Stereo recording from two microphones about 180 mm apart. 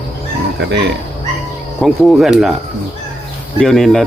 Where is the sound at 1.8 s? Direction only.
Centre (ahead or behind).